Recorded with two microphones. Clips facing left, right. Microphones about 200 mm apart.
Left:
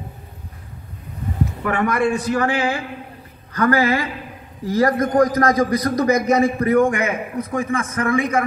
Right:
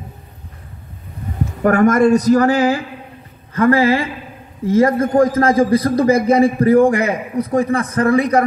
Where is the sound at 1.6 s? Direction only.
45° right (ahead or behind).